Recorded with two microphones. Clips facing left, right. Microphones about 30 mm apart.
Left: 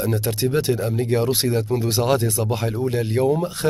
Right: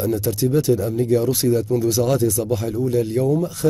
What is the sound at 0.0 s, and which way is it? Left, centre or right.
Speech, left.